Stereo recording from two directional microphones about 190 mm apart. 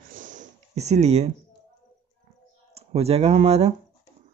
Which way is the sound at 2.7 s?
35° right (ahead or behind).